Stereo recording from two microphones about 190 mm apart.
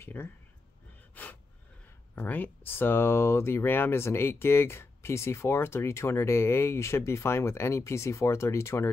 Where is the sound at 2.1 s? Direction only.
10° left (ahead or behind).